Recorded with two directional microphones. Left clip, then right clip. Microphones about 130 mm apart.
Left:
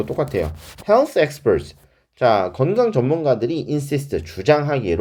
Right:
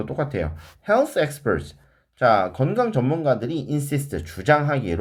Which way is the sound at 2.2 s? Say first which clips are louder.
Left 1 dB; 45° left (ahead or behind).